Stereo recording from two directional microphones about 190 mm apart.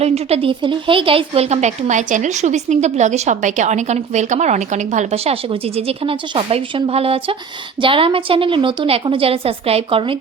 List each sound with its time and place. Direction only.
0.0 s a woman's voice: 35° right (ahead or behind)